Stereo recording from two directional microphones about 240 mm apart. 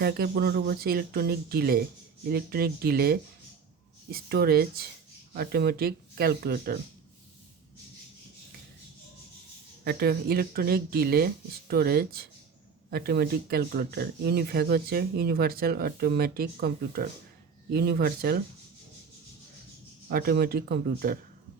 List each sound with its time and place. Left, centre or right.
0.0 s speech: right
9.8 s speech: right
20.1 s speech: right